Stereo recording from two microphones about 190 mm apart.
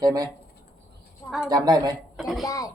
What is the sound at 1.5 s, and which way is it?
Speech, 20° right (ahead or behind).